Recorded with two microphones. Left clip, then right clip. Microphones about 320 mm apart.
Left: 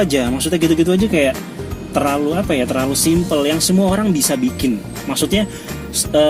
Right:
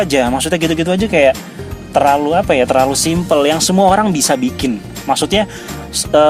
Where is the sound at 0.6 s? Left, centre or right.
Right.